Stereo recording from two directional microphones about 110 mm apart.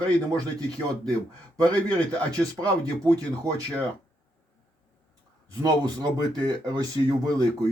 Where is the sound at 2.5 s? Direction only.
35° right (ahead or behind).